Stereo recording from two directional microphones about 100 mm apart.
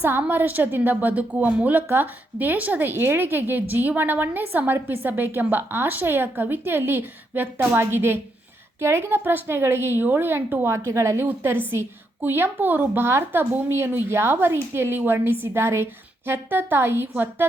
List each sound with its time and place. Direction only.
0.0 s a woman's voice: 20° right (ahead or behind)